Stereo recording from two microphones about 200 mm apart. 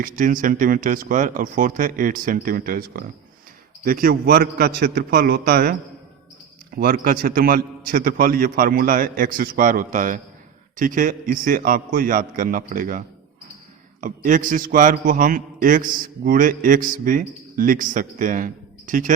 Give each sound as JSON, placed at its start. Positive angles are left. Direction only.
{"t": 0.0, "sound": "a man's voice", "side_deg": -40}
{"t": 6.7, "sound": "a man's voice", "side_deg": -45}